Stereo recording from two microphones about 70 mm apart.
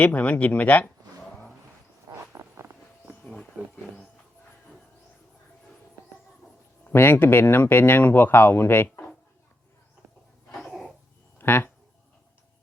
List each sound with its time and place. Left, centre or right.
0.0 s speech: left
2.3 s vehicle: right
3.2 s wild animals: centre
6.9 s speech: left
10.6 s a sound: centre
11.3 s speech: left